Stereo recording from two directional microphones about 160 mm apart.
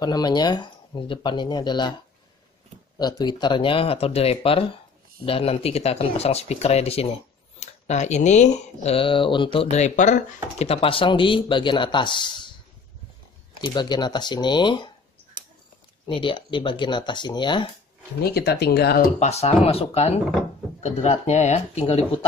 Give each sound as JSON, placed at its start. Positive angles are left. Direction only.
{"t": 0.0, "sound": "speech", "side_deg": 25}
{"t": 3.0, "sound": "speech", "side_deg": 25}
{"t": 10.6, "sound": "speech", "side_deg": 35}
{"t": 13.6, "sound": "speech", "side_deg": 25}
{"t": 16.1, "sound": "speech", "side_deg": 30}
{"t": 18.2, "sound": "speech", "side_deg": 80}
{"t": 19.1, "sound": "speech", "side_deg": 45}